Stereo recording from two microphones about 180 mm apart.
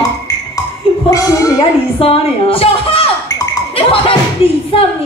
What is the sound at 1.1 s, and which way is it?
Speech, 20° left (ahead or behind).